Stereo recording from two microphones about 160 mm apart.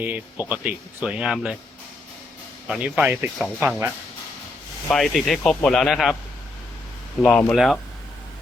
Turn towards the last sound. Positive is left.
turn(degrees=10)  # may be behind; listen again after turning